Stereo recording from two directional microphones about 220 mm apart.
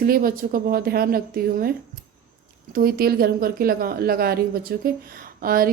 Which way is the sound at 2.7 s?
40° right (ahead or behind).